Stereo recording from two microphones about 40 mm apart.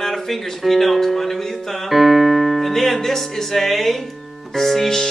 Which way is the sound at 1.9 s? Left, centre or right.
Centre.